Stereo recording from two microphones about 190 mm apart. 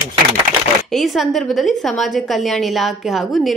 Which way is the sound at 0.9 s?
Centre (ahead or behind).